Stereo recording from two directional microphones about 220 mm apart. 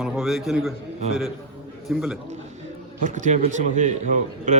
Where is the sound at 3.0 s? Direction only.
35° right (ahead or behind).